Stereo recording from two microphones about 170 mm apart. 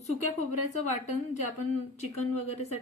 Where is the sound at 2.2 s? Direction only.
40° left (ahead or behind).